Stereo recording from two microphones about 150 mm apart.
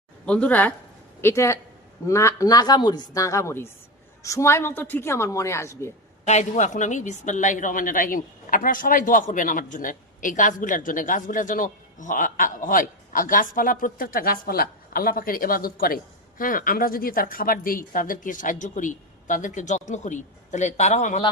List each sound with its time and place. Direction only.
0.3 s a woman's voice: 10° left (ahead or behind)
6.2 s a woman's voice: 50° left (ahead or behind)